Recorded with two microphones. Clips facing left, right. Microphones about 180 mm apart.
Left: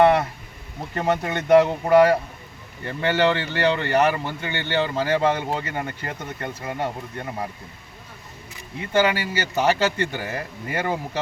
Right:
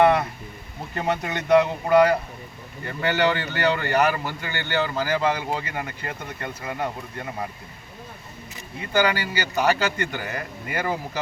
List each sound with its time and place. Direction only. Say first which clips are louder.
0.0 s a sound: left 1 dB; 30° left (ahead or behind)
0.9 s speech: left 3 dB; 30° left (ahead or behind)
8.9 s speech: left 2 dB; 25° left (ahead or behind)